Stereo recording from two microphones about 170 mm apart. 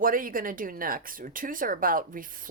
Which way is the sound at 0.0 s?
55° right (ahead or behind).